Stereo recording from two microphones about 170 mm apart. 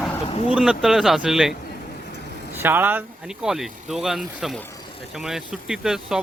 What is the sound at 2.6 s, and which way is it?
Speech, 10° right (ahead or behind).